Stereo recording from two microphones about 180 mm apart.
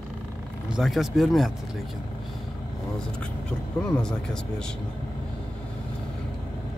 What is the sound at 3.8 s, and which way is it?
Speech, 5° left (ahead or behind).